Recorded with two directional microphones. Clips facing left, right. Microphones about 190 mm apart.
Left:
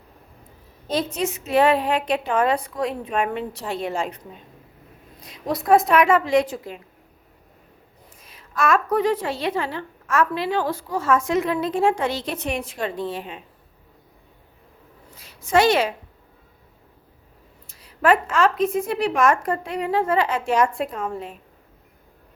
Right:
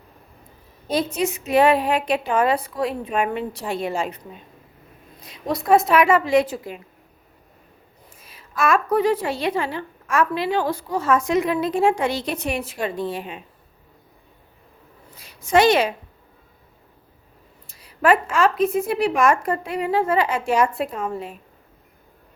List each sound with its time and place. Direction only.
0.9 s a woman's voice: 10° right (ahead or behind)
8.2 s a woman's voice: 5° right (ahead or behind)
15.1 s a woman's voice: 15° right (ahead or behind)
17.7 s a woman's voice: 10° right (ahead or behind)